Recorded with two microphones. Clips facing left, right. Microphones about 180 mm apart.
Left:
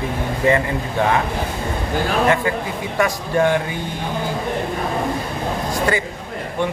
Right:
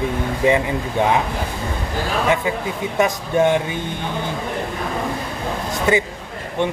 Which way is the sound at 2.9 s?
20° right (ahead or behind).